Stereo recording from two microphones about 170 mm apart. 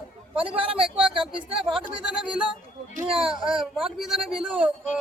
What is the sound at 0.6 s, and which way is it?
Speech, 35° right (ahead or behind).